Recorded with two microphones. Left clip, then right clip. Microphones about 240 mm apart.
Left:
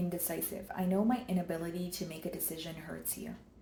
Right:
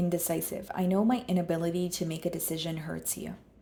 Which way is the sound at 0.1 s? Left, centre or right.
Right.